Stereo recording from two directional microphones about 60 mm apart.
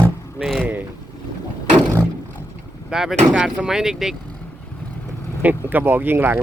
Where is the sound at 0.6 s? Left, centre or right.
Right.